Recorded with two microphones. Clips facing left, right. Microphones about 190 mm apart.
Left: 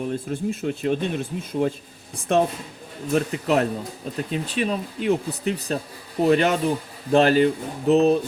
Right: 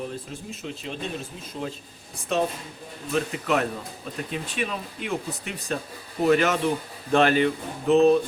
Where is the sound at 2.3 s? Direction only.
55° left (ahead or behind).